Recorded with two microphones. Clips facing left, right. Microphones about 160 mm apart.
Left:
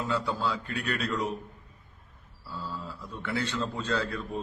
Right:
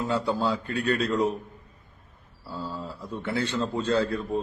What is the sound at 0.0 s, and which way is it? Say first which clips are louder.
A man's voice: right 4 dB; 30° right (ahead or behind).